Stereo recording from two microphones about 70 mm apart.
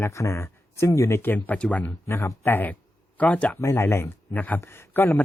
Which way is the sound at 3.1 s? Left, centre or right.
Left.